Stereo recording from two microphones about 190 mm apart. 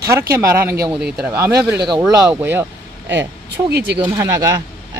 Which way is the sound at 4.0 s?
15° right (ahead or behind).